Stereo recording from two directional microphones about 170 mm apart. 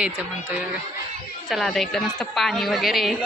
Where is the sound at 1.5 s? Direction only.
Centre (ahead or behind).